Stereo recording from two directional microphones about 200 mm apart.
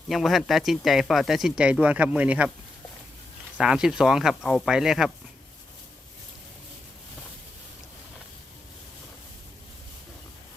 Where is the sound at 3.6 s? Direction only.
5° right (ahead or behind).